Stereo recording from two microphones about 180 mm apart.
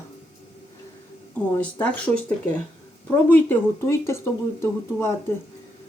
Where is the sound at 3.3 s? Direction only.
15° left (ahead or behind).